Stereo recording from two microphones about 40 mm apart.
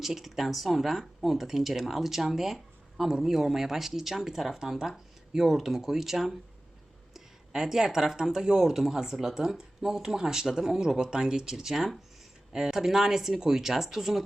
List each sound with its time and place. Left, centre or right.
0.0 s speech: centre